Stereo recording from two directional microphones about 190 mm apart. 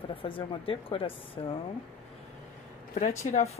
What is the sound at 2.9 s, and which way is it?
Speech, 35° left (ahead or behind).